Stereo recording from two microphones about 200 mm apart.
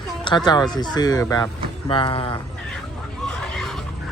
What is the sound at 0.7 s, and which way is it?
Speech, 20° left (ahead or behind).